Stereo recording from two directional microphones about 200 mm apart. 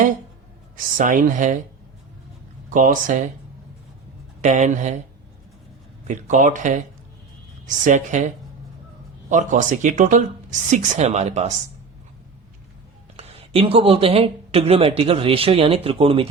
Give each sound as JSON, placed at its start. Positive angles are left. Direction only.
{"t": 0.9, "sound": "speech", "side_deg": -40}
{"t": 2.6, "sound": "speech", "side_deg": -40}
{"t": 4.4, "sound": "speech", "side_deg": -35}
{"t": 6.1, "sound": "speech", "side_deg": -40}
{"t": 7.9, "sound": "speech", "side_deg": -35}
{"t": 9.3, "sound": "speech", "side_deg": -40}
{"t": 13.1, "sound": "speech", "side_deg": -25}